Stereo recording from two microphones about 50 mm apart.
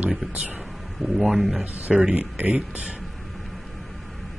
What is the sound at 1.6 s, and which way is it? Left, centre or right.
Speech, right.